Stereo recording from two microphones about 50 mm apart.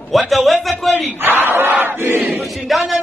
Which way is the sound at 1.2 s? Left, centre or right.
Right.